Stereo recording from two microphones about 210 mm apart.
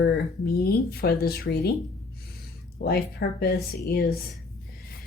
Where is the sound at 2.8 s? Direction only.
50° left (ahead or behind).